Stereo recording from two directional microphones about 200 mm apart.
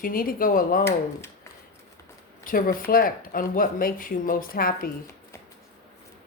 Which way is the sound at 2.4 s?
45° left (ahead or behind).